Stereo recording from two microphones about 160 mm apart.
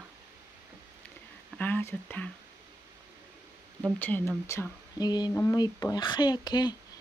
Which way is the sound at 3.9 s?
10° left (ahead or behind).